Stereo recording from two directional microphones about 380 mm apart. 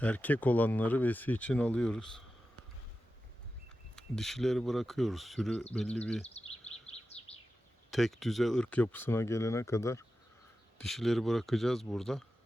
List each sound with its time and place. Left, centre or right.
0.0 s speech: centre
3.9 s speech: centre
6.8 s bird vocalization: centre
7.9 s speech: centre